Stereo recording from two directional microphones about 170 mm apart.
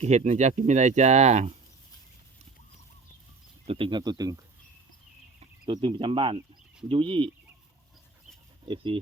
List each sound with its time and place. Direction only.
0.0 s speech: 40° right (ahead or behind)
3.7 s speech: 30° right (ahead or behind)
5.6 s speech: 25° right (ahead or behind)
8.6 s speech: 30° right (ahead or behind)